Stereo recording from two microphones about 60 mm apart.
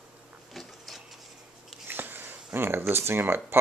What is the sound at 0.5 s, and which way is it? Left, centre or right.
Printer, centre.